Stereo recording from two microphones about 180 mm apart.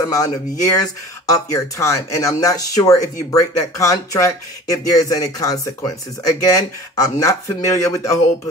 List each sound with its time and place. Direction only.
0.1 s speech: 20° left (ahead or behind)